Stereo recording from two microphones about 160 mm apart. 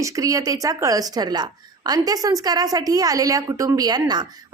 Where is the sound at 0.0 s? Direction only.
20° right (ahead or behind).